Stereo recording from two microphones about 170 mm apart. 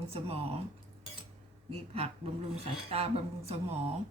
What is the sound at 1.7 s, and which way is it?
Speech, 35° right (ahead or behind).